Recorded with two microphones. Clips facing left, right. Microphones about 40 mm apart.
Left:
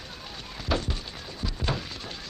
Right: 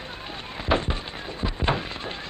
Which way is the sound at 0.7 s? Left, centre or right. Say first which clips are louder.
Right 5 dB; right.